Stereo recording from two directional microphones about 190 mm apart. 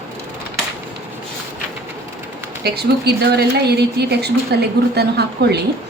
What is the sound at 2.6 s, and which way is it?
A woman's voice, 60° right (ahead or behind).